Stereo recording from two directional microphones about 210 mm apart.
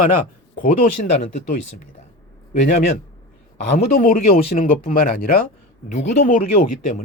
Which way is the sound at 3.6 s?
45° left (ahead or behind).